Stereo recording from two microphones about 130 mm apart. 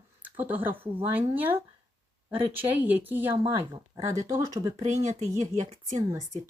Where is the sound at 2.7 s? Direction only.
15° right (ahead or behind).